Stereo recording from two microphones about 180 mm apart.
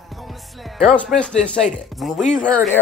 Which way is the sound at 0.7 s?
Centre (ahead or behind).